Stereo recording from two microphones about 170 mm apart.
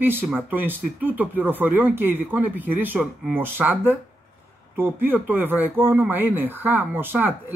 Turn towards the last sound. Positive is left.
turn(degrees=-10)  # may be behind; listen again after turning